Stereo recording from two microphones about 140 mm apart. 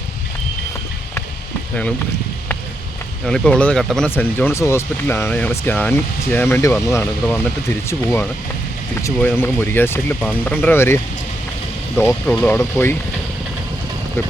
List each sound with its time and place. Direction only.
3.2 s speech: 5° left (ahead or behind)
4.1 s speech: 15° left (ahead or behind)